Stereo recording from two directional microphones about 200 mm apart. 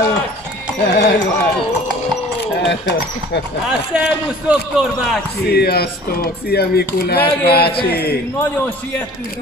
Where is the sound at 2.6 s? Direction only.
60° left (ahead or behind).